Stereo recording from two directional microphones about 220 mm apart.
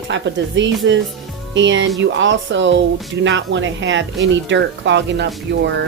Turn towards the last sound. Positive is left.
turn(degrees=-50)  # may be behind; listen again after turning